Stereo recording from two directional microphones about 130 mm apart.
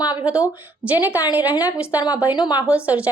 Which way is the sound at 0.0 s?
35° left (ahead or behind).